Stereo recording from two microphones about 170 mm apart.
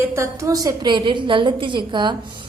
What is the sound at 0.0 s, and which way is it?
A woman's voice, 15° right (ahead or behind).